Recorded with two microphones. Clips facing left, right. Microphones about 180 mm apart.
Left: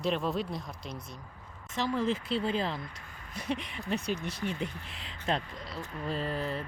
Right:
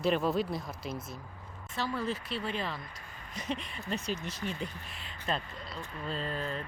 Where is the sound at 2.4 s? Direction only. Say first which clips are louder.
Left 5 dB; 25° left (ahead or behind).